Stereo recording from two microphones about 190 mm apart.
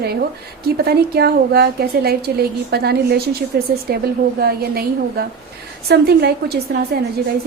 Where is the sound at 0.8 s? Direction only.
55° right (ahead or behind).